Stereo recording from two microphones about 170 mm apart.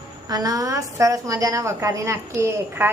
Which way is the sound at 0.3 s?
20° right (ahead or behind).